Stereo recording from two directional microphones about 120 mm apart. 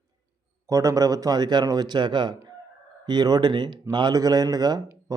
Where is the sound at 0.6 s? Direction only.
25° right (ahead or behind).